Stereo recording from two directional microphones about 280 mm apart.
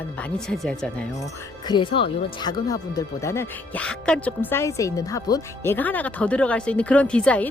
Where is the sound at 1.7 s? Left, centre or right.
Centre.